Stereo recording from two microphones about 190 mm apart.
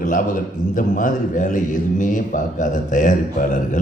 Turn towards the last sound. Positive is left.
turn(degrees=40)  # may be behind; listen again after turning